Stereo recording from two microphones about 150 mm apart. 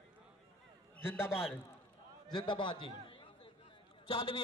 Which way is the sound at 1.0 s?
15° left (ahead or behind).